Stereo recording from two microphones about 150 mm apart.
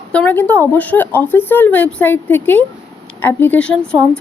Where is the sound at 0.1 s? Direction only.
10° left (ahead or behind).